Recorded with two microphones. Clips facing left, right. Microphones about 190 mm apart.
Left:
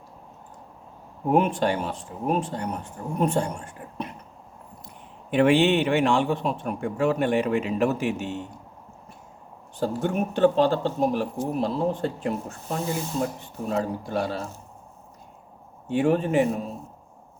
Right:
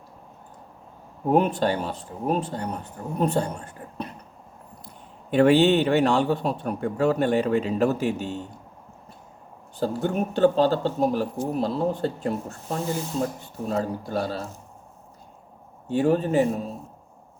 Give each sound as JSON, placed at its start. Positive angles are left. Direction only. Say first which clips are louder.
{"t": 1.3, "sound": "speech", "louder": "right 1 dB", "side_deg": -35}
{"t": 5.3, "sound": "speech", "louder": "right 2 dB", "side_deg": -35}
{"t": 9.8, "sound": "speech", "louder": "even", "side_deg": -35}
{"t": 15.9, "sound": "speech", "louder": "right 1 dB", "side_deg": -35}